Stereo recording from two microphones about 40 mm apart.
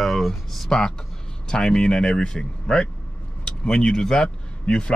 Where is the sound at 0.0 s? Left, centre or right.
Centre.